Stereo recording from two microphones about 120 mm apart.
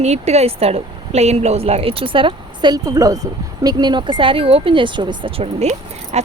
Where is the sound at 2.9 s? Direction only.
30° right (ahead or behind).